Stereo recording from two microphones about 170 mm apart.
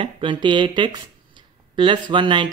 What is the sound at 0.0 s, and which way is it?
Speech, 30° right (ahead or behind).